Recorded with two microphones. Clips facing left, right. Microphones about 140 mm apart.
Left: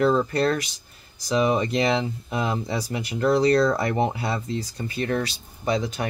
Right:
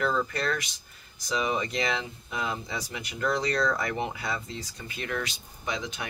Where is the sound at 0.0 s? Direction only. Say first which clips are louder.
Left 8 dB; 35° left (ahead or behind).